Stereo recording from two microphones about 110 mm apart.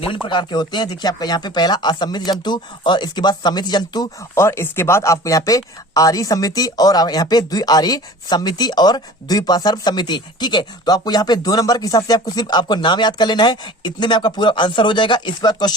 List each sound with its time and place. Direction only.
0.0 s speech: 50° left (ahead or behind)
4.4 s speech: 25° left (ahead or behind); by 15.7 s 40° left (ahead or behind)